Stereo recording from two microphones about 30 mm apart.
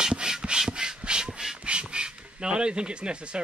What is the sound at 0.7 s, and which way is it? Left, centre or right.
Rub, right.